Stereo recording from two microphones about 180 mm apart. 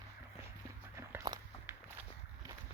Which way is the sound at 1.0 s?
20° right (ahead or behind).